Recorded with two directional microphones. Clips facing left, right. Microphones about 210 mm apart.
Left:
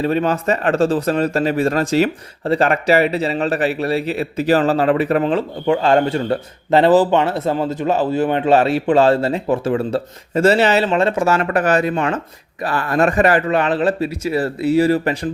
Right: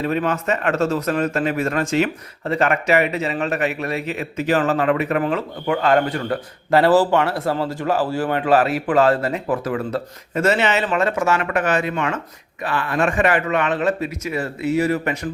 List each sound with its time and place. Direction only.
0.0 s speech: 30° left (ahead or behind)